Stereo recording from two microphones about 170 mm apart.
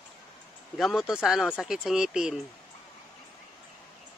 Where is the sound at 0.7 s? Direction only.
Centre (ahead or behind).